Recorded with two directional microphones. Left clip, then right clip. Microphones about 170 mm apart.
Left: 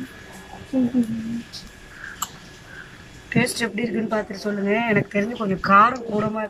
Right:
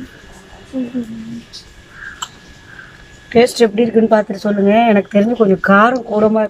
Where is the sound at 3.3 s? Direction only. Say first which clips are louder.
Right 12 dB; 60° right (ahead or behind).